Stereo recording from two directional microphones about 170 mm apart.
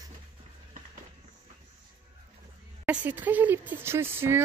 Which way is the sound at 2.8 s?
10° right (ahead or behind).